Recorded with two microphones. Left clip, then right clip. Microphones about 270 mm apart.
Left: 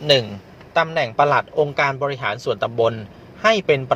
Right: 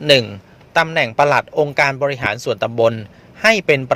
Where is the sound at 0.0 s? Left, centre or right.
Right.